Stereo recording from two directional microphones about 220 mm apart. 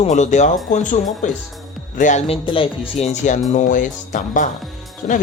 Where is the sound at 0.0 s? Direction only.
35° left (ahead or behind).